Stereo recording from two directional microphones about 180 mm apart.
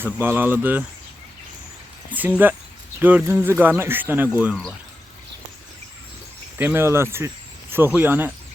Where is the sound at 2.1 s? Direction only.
10° right (ahead or behind).